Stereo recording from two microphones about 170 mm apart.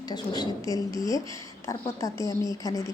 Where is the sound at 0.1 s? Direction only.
20° left (ahead or behind).